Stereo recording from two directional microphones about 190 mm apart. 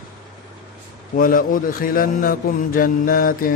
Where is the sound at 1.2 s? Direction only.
45° left (ahead or behind).